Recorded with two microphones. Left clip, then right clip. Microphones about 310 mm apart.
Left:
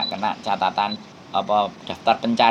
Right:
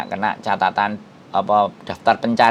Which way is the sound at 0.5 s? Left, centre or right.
Right.